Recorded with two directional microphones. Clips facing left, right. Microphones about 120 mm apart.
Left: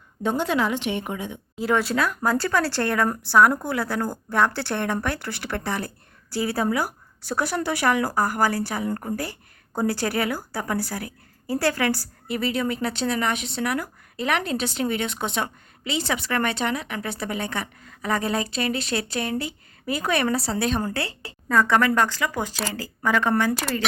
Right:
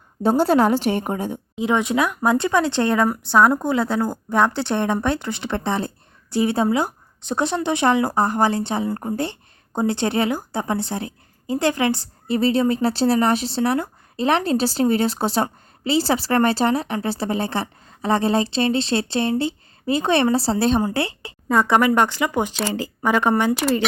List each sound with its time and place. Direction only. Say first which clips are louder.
0.2 s a woman's voice: right 7 dB; 35° right (ahead or behind)
1.6 s speech: right 3 dB; 20° right (ahead or behind)